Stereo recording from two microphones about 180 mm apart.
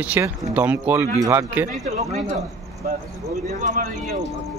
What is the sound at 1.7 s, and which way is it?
Speech, 40° right (ahead or behind).